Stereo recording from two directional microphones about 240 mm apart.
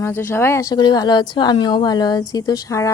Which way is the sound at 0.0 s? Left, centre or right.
Centre.